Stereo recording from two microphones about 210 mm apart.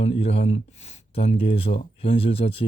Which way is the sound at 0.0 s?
30° left (ahead or behind).